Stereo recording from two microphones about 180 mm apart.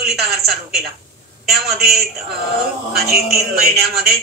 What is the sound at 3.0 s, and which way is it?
Speech, centre (ahead or behind).